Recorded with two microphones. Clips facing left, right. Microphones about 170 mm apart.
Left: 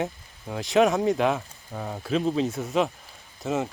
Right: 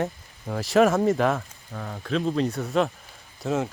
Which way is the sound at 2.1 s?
5° left (ahead or behind).